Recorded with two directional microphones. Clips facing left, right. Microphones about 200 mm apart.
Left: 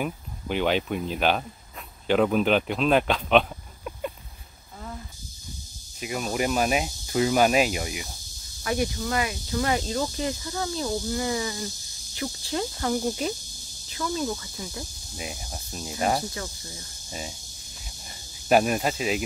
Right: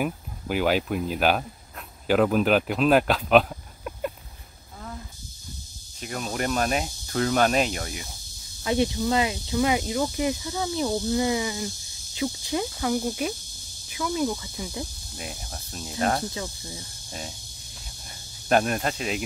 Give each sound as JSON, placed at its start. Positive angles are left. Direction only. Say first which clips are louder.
{"t": 0.0, "sound": "speech", "louder": "right 2 dB", "side_deg": -5}
{"t": 5.9, "sound": "speech", "louder": "left 2 dB", "side_deg": 5}
{"t": 8.6, "sound": "speech", "louder": "right 3 dB", "side_deg": -25}
{"t": 12.7, "sound": "speech", "louder": "even", "side_deg": 0}
{"t": 13.8, "sound": "speech", "louder": "right 2 dB", "side_deg": -15}
{"t": 15.1, "sound": "speech", "louder": "left 1 dB", "side_deg": 5}
{"t": 16.3, "sound": "speech", "louder": "right 2 dB", "side_deg": -20}
{"t": 17.1, "sound": "speech", "louder": "left 1 dB", "side_deg": 0}
{"t": 18.5, "sound": "speech", "louder": "left 2 dB", "side_deg": 5}